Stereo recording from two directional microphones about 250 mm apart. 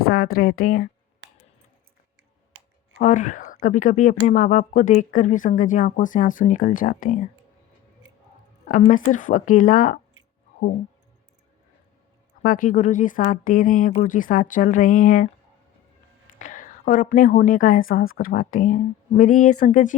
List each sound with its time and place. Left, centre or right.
0.1 s speech: left
1.2 s coin: right
3.0 s speech: left
8.6 s speech: left
12.4 s speech: left
16.4 s a woman's voice: left
19.3 s speech: left
19.5 s speech: left